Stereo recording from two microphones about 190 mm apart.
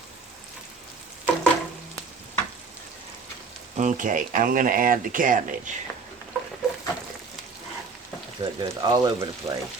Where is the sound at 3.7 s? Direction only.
40° right (ahead or behind).